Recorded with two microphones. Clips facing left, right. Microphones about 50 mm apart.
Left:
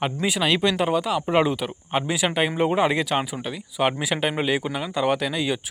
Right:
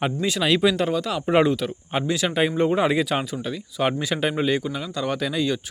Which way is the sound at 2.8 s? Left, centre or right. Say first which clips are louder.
Even; centre.